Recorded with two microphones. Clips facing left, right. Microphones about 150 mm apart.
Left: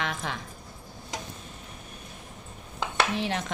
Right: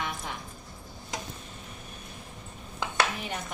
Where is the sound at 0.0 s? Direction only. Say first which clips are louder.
Left 3 dB; 90° left.